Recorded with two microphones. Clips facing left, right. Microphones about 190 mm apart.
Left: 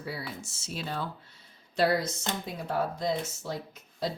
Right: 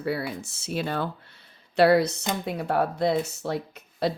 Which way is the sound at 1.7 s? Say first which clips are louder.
Right 8 dB; 65° right (ahead or behind).